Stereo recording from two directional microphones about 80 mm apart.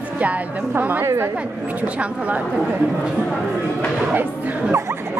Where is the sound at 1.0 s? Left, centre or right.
Right.